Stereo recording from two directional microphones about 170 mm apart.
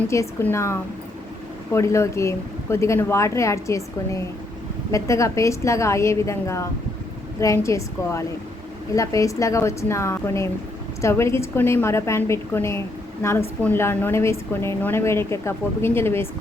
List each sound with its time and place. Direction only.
0.1 s a woman's voice: 15° left (ahead or behind)